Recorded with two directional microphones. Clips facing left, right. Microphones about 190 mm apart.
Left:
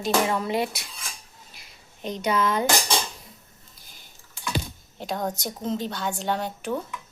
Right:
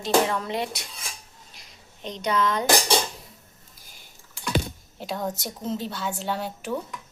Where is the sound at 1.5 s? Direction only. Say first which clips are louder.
Right 1 dB; 5° left (ahead or behind).